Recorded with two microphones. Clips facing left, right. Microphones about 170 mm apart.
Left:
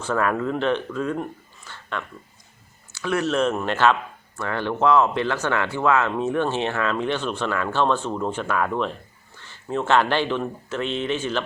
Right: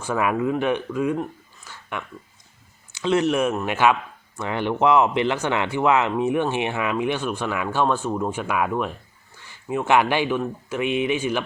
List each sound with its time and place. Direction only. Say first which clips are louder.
0.0 s speech: right 1 dB; 10° right (ahead or behind)
1.6 s a sound: left 1 dB; 10° right (ahead or behind)
2.9 s speech: right 3 dB; 20° right (ahead or behind)
3.5 s speech: even; centre (ahead or behind)
4.4 s speech: right 1 dB; 15° right (ahead or behind)